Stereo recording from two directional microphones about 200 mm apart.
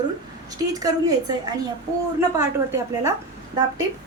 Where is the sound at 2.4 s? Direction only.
15° right (ahead or behind).